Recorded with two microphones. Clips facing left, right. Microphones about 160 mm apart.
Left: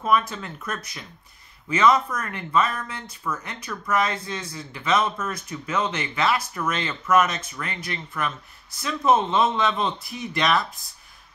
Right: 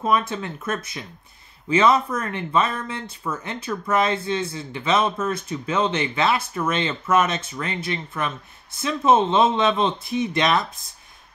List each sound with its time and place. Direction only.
0.0 s speech: 25° right (ahead or behind)